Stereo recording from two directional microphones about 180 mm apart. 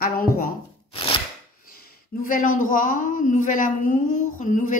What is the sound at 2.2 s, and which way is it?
Speech, 50° left (ahead or behind).